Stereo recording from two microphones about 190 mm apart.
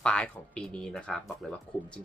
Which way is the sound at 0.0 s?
5° left (ahead or behind).